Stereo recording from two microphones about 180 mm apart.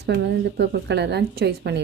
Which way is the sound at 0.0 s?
65° right (ahead or behind).